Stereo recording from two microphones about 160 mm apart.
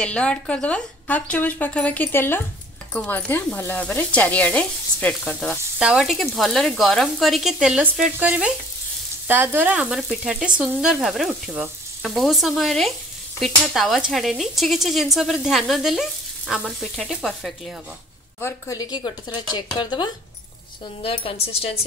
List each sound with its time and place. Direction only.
0.0 s speech: 5° left (ahead or behind); by 8.5 s 10° right (ahead or behind)
9.3 s frying: 15° right (ahead or behind)
10.6 s speech: 5° right (ahead or behind)
18.4 s a woman's voice: 20° left (ahead or behind); by 21.7 s 35° left (ahead or behind)